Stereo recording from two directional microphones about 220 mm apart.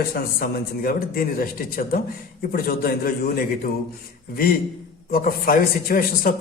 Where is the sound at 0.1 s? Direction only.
40° left (ahead or behind).